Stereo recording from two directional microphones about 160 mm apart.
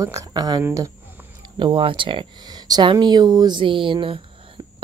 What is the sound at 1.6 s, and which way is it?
Speech, 30° right (ahead or behind).